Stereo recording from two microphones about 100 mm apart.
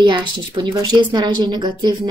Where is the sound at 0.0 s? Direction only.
50° right (ahead or behind).